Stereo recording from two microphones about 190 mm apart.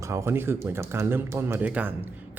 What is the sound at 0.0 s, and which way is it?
Speech, 15° right (ahead or behind).